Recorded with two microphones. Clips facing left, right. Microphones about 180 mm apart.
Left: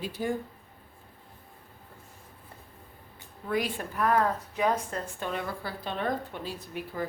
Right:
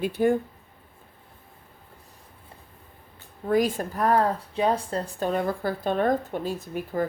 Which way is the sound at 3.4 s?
45° right (ahead or behind).